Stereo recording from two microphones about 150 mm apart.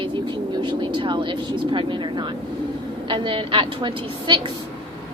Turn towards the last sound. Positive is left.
turn(degrees=-35)  # may be behind; listen again after turning